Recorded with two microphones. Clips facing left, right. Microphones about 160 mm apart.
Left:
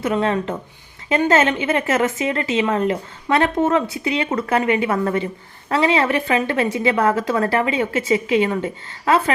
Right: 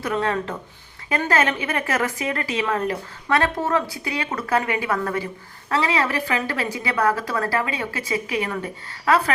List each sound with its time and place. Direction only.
0.0 s a woman's voice: 25° left (ahead or behind)